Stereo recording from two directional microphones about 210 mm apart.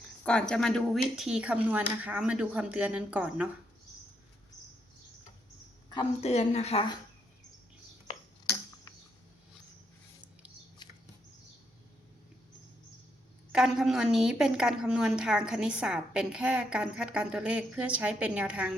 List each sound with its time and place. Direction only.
0.3 s a woman's voice: 5° left (ahead or behind)
5.9 s a woman's voice: 25° left (ahead or behind)
13.5 s a woman's voice: centre (ahead or behind)